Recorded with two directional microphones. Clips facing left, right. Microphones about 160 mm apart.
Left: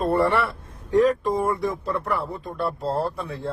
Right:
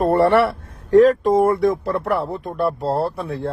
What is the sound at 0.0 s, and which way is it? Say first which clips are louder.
Speech: right 6 dB; 70° right (ahead or behind).